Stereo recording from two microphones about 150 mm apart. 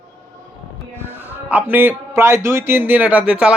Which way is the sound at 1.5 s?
10° right (ahead or behind).